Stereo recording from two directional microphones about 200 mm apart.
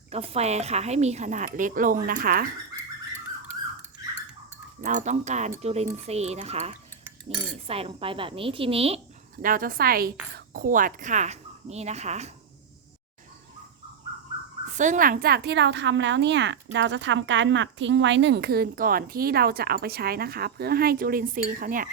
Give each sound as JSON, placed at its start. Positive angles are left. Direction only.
{"t": 0.1, "sound": "a woman's voice", "side_deg": -30}
{"t": 4.8, "sound": "a woman's voice", "side_deg": -35}
{"t": 9.4, "sound": "a woman's voice", "side_deg": -45}
{"t": 14.7, "sound": "a woman's voice", "side_deg": -35}